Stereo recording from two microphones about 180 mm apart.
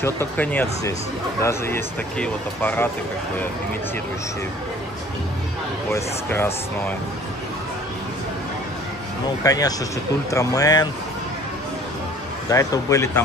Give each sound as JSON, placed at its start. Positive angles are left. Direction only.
{"t": 0.0, "sound": "speech", "side_deg": 10}
{"t": 5.9, "sound": "speech", "side_deg": 15}
{"t": 9.4, "sound": "speech", "side_deg": 20}
{"t": 12.4, "sound": "speech", "side_deg": 20}